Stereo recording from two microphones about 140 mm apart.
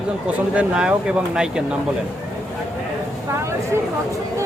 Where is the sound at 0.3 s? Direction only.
10° right (ahead or behind).